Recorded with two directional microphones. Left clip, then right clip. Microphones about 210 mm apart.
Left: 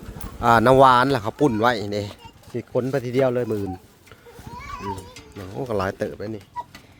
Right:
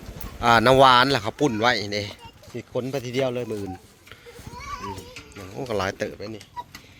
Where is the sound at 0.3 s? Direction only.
20° left (ahead or behind).